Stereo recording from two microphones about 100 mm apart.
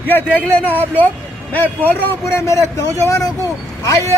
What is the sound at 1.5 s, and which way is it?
Speech, 20° left (ahead or behind).